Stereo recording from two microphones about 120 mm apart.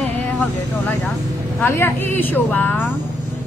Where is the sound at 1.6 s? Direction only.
20° left (ahead or behind).